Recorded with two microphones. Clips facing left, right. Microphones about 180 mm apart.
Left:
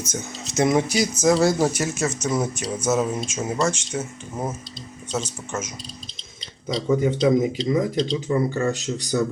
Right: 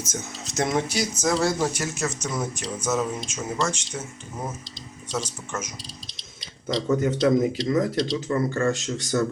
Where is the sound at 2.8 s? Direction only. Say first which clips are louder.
Left 4 dB; 25° left (ahead or behind).